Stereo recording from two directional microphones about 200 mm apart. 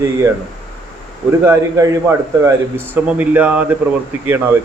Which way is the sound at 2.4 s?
10° right (ahead or behind).